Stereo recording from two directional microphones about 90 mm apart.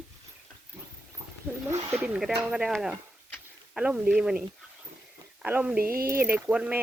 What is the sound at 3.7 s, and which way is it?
Speech, 10° right (ahead or behind).